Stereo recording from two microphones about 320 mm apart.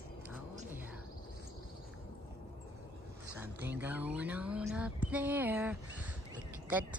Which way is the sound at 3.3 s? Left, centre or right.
Centre.